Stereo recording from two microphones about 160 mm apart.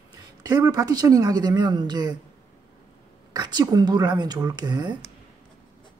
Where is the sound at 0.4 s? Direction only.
20° right (ahead or behind).